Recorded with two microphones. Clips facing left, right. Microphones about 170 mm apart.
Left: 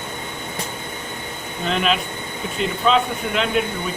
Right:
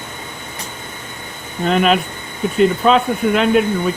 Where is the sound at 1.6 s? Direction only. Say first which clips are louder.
Right 6 dB; 50° right (ahead or behind).